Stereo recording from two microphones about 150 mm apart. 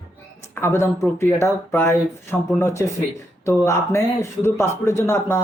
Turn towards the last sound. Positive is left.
turn(degrees=15)  # may be behind; listen again after turning